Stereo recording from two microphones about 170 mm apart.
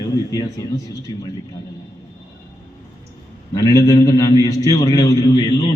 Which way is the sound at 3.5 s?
20° left (ahead or behind).